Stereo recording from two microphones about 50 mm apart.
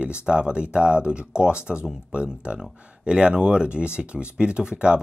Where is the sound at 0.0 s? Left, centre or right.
Right.